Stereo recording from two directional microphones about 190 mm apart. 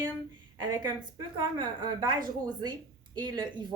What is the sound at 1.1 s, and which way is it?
Speech, 20° right (ahead or behind).